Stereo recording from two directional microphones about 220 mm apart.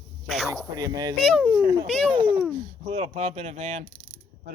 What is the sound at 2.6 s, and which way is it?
Speech, 25° right (ahead or behind).